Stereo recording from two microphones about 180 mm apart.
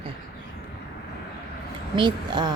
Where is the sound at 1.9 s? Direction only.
25° right (ahead or behind).